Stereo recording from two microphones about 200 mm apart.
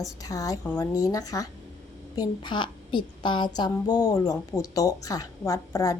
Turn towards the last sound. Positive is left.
turn(degrees=15)  # may be behind; listen again after turning